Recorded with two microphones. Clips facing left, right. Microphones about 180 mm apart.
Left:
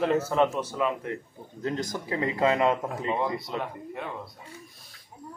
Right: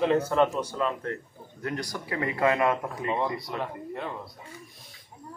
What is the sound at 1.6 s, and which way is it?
Speech, 25° left (ahead or behind).